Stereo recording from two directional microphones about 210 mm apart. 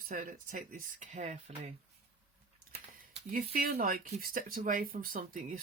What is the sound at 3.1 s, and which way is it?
Speech, 40° right (ahead or behind).